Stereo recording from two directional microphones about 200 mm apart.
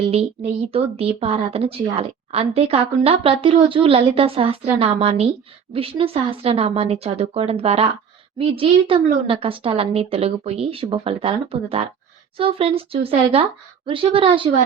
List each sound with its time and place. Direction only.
0.0 s a woman's voice: 30° right (ahead or behind)